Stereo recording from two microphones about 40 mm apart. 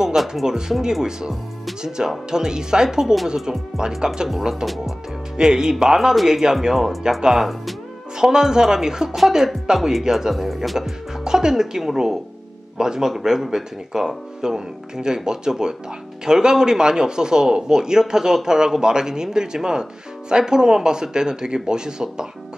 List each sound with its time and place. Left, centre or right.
0.4 s speech: centre
4.3 s speech: centre
5.4 s speech: centre
5.9 s speech: centre
10.3 s speech: centre
11.2 s speech: centre